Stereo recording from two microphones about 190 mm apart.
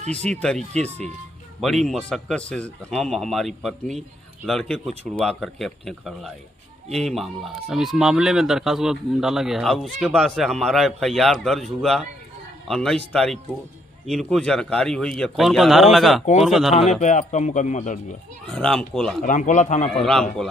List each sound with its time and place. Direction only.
0.1 s a man's voice: 5° left (ahead or behind)
17.0 s a man's voice: 40° left (ahead or behind)
18.5 s speech: 5° left (ahead or behind)
19.2 s a man's voice: 40° left (ahead or behind)
20.0 s speech: centre (ahead or behind)